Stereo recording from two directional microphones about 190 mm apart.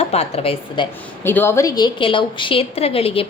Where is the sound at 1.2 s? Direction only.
10° left (ahead or behind); by 3.2 s 30° left (ahead or behind).